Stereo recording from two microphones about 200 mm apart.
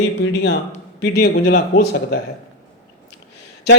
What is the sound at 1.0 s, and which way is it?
Speech, 50° left (ahead or behind).